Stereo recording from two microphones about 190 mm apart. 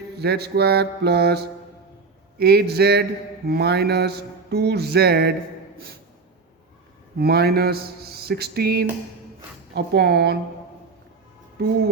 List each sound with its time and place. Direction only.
0.2 s mantra: 60° right (ahead or behind)
5.7 s speech: 50° right (ahead or behind)
7.2 s mantra: 55° right (ahead or behind)